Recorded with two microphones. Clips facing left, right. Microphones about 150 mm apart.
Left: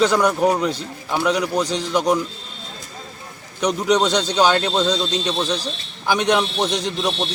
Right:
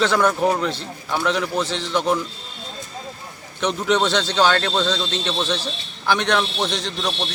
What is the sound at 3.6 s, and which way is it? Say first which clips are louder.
A man's voice: left 2 dB; 15° left (ahead or behind).